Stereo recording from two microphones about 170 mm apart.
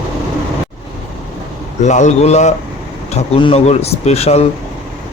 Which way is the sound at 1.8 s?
45° left (ahead or behind).